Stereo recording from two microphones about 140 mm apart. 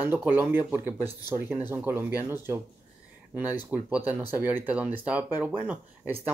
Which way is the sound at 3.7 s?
15° right (ahead or behind).